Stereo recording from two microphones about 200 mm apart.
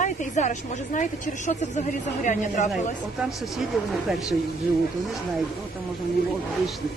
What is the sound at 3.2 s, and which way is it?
Speech, centre (ahead or behind).